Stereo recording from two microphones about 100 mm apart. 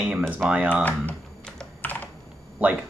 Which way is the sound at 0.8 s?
15° left (ahead or behind).